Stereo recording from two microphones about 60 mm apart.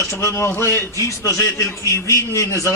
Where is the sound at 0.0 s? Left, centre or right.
Left.